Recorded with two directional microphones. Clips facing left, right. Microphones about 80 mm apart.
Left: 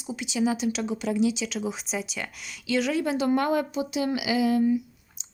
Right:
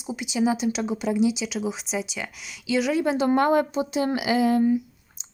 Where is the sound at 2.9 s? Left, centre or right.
Right.